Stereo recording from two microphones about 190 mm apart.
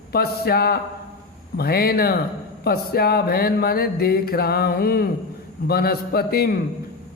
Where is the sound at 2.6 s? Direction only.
55° left (ahead or behind).